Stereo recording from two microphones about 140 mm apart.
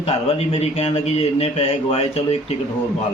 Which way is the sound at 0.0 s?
45° left (ahead or behind).